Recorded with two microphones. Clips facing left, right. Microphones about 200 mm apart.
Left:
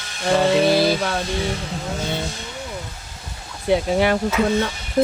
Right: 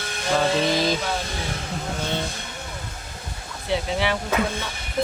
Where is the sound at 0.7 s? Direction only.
10° left (ahead or behind).